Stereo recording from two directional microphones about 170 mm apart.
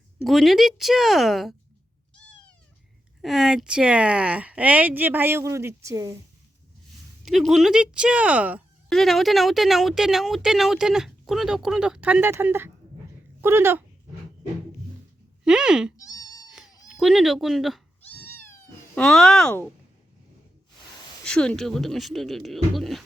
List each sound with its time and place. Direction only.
0.3 s a woman's voice: centre (ahead or behind)
3.2 s speech: centre (ahead or behind); by 6.1 s 20° right (ahead or behind)
7.3 s a woman's voice: centre (ahead or behind)
15.4 s a woman's voice: 5° right (ahead or behind)
16.0 s cat: 20° left (ahead or behind)
16.5 s cat: centre (ahead or behind)
16.9 s a woman's voice: centre (ahead or behind)
18.1 s cat: 10° left (ahead or behind)
18.9 s a woman's voice: 5° left (ahead or behind)
21.2 s a woman's voice: 5° left (ahead or behind)